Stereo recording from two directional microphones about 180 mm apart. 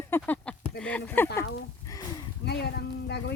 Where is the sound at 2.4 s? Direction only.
65° left (ahead or behind).